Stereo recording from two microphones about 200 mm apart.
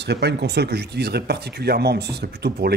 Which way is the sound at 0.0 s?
55° right (ahead or behind).